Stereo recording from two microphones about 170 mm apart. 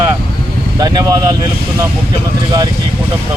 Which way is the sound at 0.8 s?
25° right (ahead or behind).